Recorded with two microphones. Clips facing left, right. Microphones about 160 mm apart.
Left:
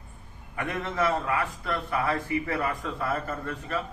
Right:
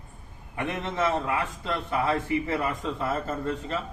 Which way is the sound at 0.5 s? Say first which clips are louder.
Even; 25° right (ahead or behind).